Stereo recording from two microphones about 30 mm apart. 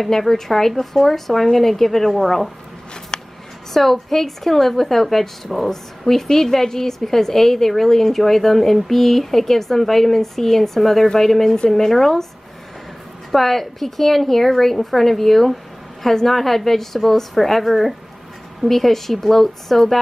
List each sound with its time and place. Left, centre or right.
0.0 s a woman's voice: centre
3.1 s a sound: left
3.7 s a woman's voice: centre
13.3 s a woman's voice: centre